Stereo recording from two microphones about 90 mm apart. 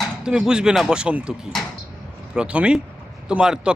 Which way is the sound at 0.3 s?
10° right (ahead or behind).